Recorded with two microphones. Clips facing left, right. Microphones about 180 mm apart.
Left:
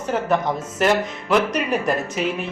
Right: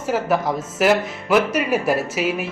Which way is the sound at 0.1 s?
5° right (ahead or behind).